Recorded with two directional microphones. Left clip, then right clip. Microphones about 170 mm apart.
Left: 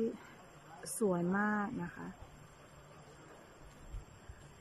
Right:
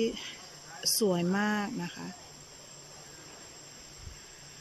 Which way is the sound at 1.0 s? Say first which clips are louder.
Right 2 dB; 20° right (ahead or behind).